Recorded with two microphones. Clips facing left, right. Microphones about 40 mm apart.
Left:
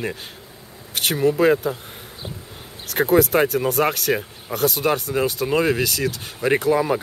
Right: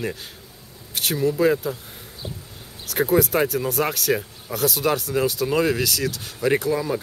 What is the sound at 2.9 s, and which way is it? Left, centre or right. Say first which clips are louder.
Speech: left 3 dB; centre.